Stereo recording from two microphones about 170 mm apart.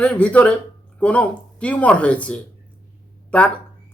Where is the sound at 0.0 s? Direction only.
10° left (ahead or behind).